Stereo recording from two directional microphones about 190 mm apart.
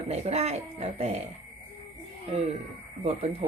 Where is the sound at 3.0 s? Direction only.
35° right (ahead or behind).